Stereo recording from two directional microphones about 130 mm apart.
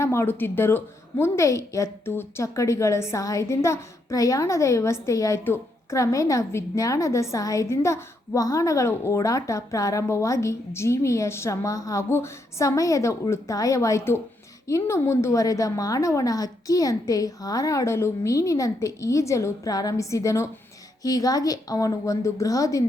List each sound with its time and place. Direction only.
0.0 s a woman's voice: 20° left (ahead or behind)